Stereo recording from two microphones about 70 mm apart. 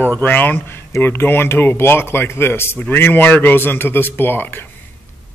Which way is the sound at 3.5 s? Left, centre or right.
Left.